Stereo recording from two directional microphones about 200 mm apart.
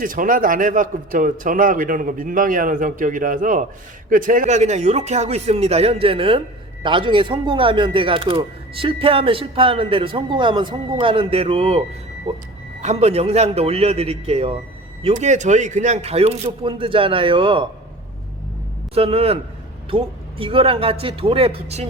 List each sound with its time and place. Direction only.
0.0 s a man's voice: 45° right (ahead or behind); by 17.7 s 25° right (ahead or behind)
18.9 s speech: 30° right (ahead or behind)